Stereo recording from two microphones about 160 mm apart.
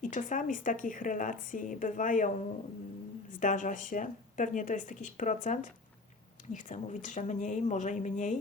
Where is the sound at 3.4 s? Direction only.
55° left (ahead or behind).